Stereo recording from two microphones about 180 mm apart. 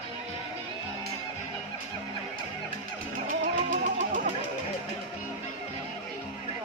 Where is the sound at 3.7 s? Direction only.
45° right (ahead or behind).